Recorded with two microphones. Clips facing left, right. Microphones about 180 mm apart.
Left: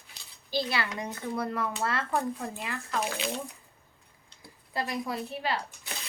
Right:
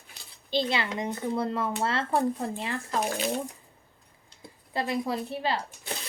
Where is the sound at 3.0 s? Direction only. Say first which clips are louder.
Right 4 dB; 40° right (ahead or behind).